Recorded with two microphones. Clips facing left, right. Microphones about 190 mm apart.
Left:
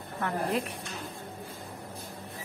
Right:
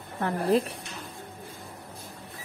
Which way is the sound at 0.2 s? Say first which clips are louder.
Right 6 dB; 30° right (ahead or behind).